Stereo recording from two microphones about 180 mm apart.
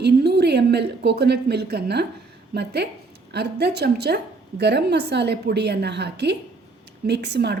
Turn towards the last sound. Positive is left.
turn(degrees=-70)  # may be behind; listen again after turning